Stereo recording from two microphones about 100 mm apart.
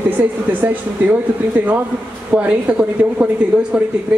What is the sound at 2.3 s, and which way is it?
Speech, 15° right (ahead or behind).